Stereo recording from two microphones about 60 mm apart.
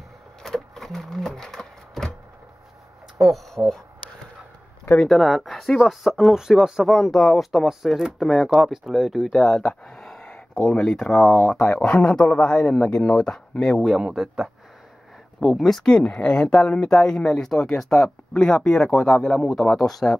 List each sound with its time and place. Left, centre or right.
0.4 s a sound: centre
3.2 s speech: centre
5.0 s speech: centre
9.3 s speech: centre
13.9 s speech: centre